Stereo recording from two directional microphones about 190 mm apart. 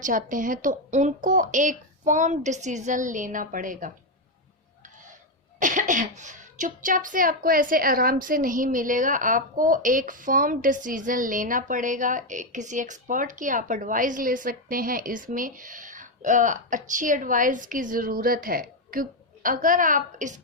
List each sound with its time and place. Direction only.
0.0 s a child's voice: 45° right (ahead or behind)
5.5 s a child's voice: 45° right (ahead or behind)